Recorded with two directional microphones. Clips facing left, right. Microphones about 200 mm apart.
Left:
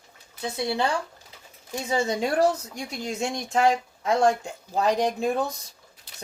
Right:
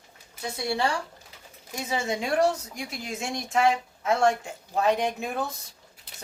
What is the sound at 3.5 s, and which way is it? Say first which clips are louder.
Speech: left 1 dB; 35° left (ahead or behind).